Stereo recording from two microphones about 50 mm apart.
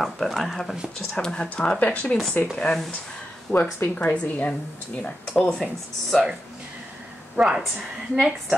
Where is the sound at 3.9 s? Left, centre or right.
Left.